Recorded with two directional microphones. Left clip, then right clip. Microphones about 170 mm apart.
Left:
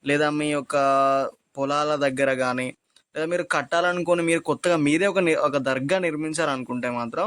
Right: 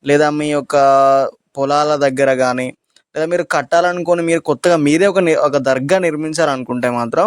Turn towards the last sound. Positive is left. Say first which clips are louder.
# right 11 dB
turn(degrees=-45)  # may be behind; listen again after turning